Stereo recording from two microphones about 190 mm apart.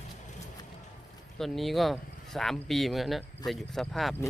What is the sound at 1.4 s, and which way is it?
Speech, centre (ahead or behind).